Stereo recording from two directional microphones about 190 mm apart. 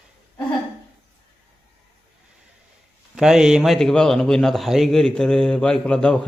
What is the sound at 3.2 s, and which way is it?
A man's voice, 5° right (ahead or behind).